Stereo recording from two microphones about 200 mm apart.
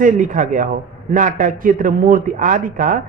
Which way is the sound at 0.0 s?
40° right (ahead or behind).